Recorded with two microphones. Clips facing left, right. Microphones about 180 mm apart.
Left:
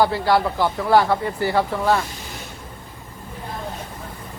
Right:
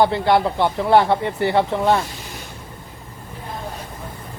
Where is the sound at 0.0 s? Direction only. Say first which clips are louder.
Right 2 dB; 20° right (ahead or behind).